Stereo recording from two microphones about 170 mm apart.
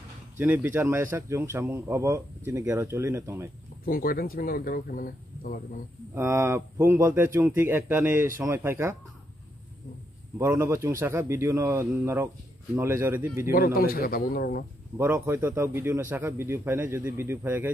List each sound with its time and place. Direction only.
0.4 s speech: 10° right (ahead or behind)
3.8 s speech: 60° left (ahead or behind)
6.1 s speech: 15° right (ahead or behind)
10.3 s speech: 10° right (ahead or behind)
13.5 s speech: 60° left (ahead or behind)
15.0 s speech: 15° right (ahead or behind)